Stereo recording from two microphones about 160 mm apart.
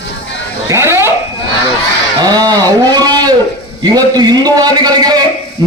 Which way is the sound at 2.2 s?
25° right (ahead or behind).